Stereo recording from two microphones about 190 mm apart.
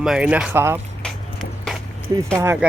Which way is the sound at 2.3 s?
15° right (ahead or behind).